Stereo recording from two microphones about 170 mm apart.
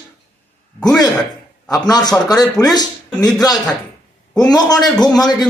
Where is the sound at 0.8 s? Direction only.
20° left (ahead or behind).